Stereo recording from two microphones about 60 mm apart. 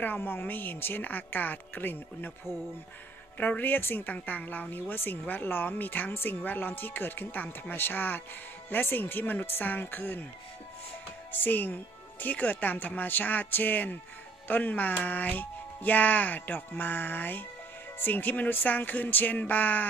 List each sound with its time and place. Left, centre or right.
0.0 s speech: left
11.3 s speech: left